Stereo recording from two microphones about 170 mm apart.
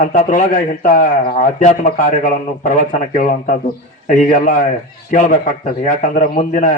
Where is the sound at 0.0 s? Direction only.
50° left (ahead or behind).